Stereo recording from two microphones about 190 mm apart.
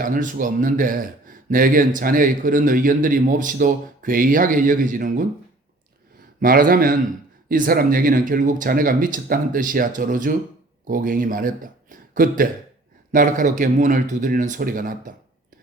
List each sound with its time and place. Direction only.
0.0 s speech: 45° right (ahead or behind)
6.4 s speech: 50° right (ahead or behind)